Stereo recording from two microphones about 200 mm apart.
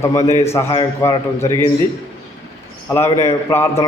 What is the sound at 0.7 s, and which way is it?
Speech, 25° left (ahead or behind).